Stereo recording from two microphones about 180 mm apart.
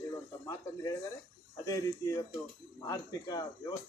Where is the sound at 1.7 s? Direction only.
20° left (ahead or behind).